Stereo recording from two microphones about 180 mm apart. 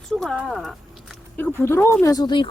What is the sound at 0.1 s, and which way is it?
Speech, centre (ahead or behind).